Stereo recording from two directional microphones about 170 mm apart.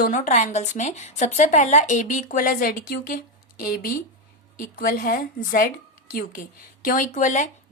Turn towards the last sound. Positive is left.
turn(degrees=45)  # may be behind; listen again after turning